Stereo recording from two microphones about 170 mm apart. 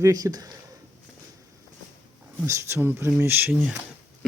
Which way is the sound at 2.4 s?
15° right (ahead or behind).